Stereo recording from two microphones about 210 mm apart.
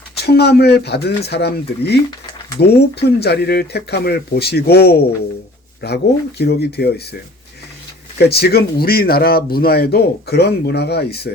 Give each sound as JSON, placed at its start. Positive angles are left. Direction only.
{"t": 0.2, "sound": "speech", "side_deg": 50}
{"t": 8.2, "sound": "speech", "side_deg": 50}